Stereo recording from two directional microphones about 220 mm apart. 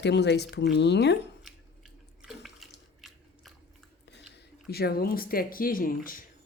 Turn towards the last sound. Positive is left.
turn(degrees=40)  # may be behind; listen again after turning